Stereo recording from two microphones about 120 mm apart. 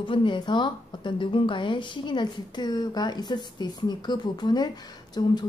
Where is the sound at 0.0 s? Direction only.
45° left (ahead or behind).